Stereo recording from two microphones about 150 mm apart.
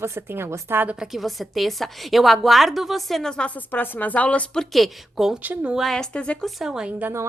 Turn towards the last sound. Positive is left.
turn(degrees=-15)  # may be behind; listen again after turning